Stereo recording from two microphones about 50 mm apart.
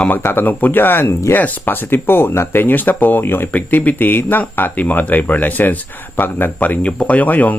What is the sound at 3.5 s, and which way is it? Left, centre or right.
Speech, left.